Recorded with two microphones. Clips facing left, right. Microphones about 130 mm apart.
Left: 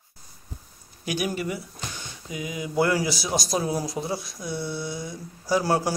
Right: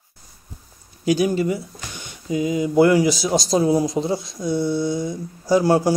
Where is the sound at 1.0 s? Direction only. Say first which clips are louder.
Right 9 dB; 25° right (ahead or behind).